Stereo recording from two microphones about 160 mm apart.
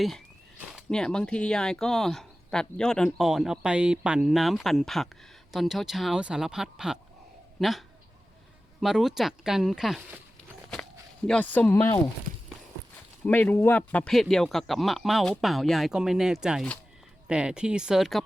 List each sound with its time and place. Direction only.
0.8 s speech: 5° left (ahead or behind)
11.3 s speech: 10° left (ahead or behind)
13.2 s speech: 10° left (ahead or behind)